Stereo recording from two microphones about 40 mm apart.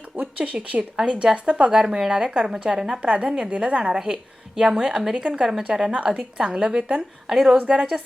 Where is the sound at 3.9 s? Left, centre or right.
Right.